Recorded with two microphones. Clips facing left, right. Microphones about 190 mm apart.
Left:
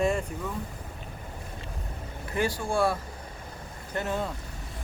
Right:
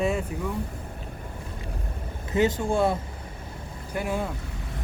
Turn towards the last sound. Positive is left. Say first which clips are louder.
# right 2 dB
turn(degrees=-10)  # may be behind; listen again after turning